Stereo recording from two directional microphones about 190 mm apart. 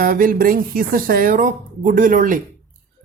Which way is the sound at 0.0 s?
45° right (ahead or behind).